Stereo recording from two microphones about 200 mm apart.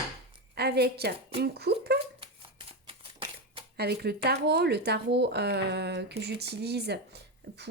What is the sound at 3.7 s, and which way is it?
Speech, 55° right (ahead or behind).